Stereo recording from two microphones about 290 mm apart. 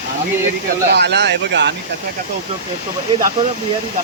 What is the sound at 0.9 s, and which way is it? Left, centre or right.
Speech, right.